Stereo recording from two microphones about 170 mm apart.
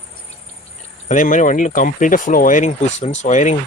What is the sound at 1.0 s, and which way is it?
Speech, 50° left (ahead or behind).